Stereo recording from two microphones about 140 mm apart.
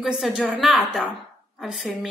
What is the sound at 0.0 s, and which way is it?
A woman's voice, 5° right (ahead or behind).